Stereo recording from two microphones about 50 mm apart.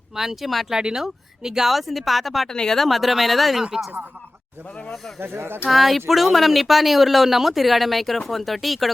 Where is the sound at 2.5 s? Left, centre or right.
Centre.